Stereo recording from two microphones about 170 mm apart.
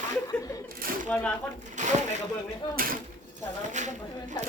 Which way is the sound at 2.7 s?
55° right (ahead or behind).